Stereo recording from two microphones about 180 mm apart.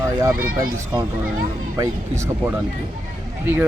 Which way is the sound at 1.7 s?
15° right (ahead or behind).